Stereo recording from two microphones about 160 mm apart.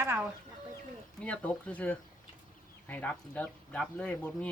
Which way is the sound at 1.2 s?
10° left (ahead or behind).